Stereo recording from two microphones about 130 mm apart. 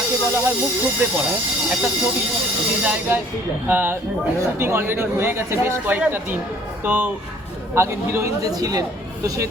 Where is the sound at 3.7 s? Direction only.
15° right (ahead or behind).